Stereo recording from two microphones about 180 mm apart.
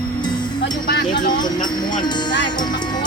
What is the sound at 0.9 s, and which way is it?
Music, 70° left (ahead or behind).